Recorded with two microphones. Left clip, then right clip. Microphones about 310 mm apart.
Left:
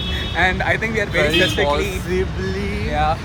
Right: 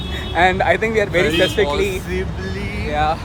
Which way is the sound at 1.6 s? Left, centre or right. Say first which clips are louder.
Even; centre.